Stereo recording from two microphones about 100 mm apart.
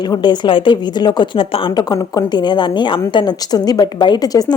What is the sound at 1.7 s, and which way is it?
A woman's voice, 40° left (ahead or behind).